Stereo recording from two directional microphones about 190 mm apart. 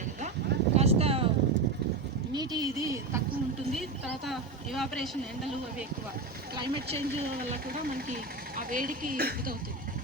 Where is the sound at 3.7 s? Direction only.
Centre (ahead or behind).